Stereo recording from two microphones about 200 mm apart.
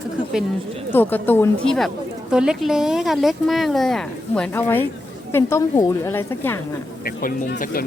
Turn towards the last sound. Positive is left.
turn(degrees=45)  # may be behind; listen again after turning